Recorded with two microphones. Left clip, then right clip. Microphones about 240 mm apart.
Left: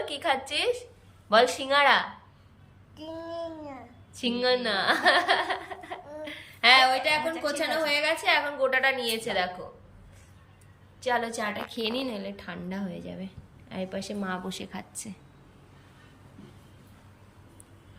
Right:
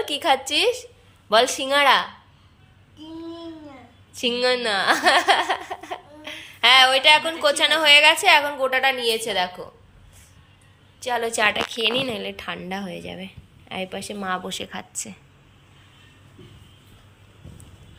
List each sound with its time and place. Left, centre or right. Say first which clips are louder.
0.1 s speech: right 8 dB; centre
4.2 s a woman's voice: right 5 dB; centre
11.0 s a woman's voice: right 5 dB; centre
11.7 s a woman's voice: right 8 dB; centre